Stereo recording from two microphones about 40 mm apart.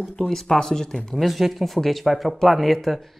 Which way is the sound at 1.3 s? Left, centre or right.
Centre.